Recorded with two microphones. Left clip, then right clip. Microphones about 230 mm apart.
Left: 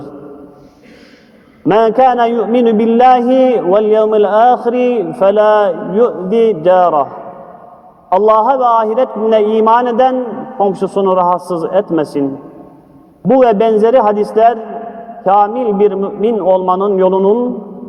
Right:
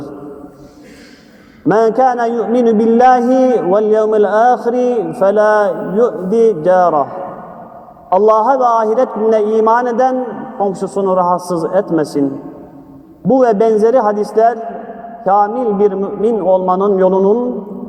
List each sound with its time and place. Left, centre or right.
1.7 s a man's voice: left
8.4 s a man's voice: left
13.2 s a man's voice: left